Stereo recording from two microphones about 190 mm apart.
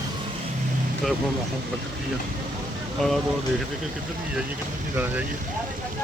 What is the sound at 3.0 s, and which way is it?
Speech, centre (ahead or behind).